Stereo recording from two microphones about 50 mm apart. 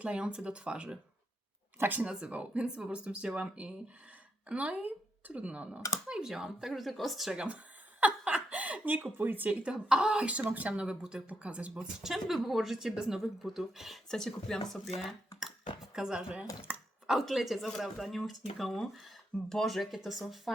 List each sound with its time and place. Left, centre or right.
0.0 s speech: right
1.8 s speech: right
2.0 s speech: right
6.1 s speech: centre
7.3 s speech: right
8.0 s laughter: right
9.1 s speech: right
9.7 s speech: centre
10.8 s speech: centre
11.8 s speech: centre
14.1 s speech: centre
16.0 s speech: centre
16.7 s chopping: right
17.1 s speech: centre